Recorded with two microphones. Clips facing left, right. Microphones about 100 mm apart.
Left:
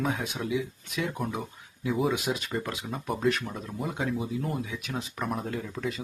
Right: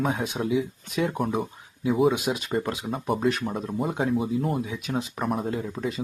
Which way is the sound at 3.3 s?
30° right (ahead or behind).